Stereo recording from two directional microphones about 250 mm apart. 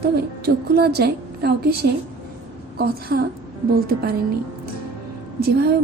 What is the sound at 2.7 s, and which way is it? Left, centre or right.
Speech, right.